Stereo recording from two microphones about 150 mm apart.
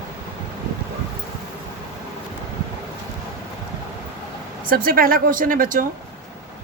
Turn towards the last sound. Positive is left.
turn(degrees=-65)  # may be behind; listen again after turning